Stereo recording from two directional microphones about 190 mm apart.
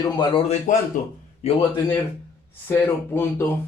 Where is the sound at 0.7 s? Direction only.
45° left (ahead or behind).